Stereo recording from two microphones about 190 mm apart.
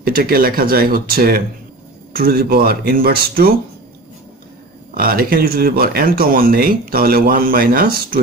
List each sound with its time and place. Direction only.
0.0 s speech: 50° right (ahead or behind)
4.9 s speech: 50° right (ahead or behind)